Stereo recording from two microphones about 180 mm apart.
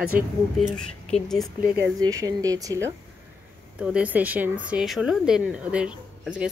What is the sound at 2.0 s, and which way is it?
Speech, 20° right (ahead or behind).